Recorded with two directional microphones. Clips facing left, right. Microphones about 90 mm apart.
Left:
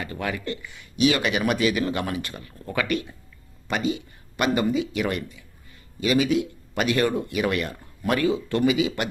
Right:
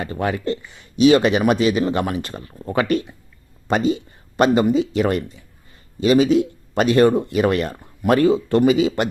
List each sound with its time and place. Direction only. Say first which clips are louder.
0.0 s speech: right 7 dB; 35° right (ahead or behind)